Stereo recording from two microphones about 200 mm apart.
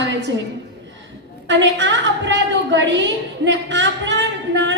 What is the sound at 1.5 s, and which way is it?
A woman's voice, 65° right (ahead or behind).